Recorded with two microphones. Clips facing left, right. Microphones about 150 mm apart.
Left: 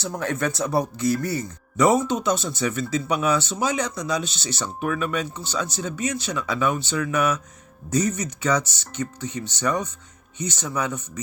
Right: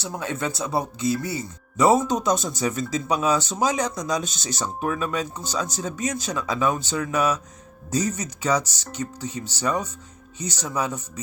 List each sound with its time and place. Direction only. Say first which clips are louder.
0.2 s speech: left 3 dB; 20° right (ahead or behind)